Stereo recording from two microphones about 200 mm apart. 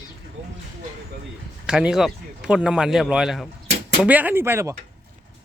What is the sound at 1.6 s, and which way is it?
Speech, 5° right (ahead or behind).